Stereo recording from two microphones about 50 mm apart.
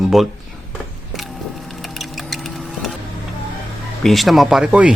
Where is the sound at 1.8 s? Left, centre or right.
Centre.